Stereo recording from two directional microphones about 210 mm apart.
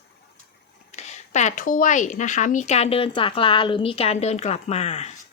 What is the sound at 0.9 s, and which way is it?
Speech, 30° left (ahead or behind).